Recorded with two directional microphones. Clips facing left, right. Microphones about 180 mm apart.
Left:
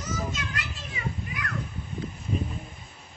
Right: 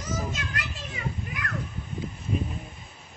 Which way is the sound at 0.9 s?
50° right (ahead or behind).